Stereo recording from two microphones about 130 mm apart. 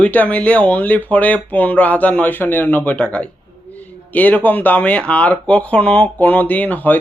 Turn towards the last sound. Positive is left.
turn(degrees=15)  # may be behind; listen again after turning